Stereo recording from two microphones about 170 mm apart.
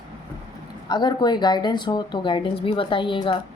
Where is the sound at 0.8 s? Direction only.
25° left (ahead or behind).